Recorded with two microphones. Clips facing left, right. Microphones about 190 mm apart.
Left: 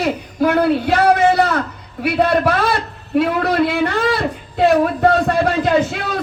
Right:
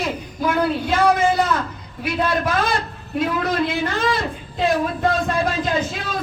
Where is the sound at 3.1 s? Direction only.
65° left (ahead or behind).